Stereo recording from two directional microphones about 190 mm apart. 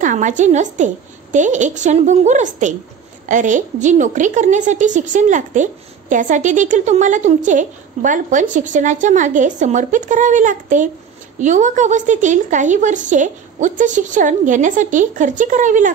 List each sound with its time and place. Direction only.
0.0 s a woman's voice: 40° right (ahead or behind)